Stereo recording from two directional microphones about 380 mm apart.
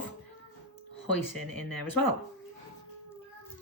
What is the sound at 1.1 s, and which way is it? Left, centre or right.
Speech, left.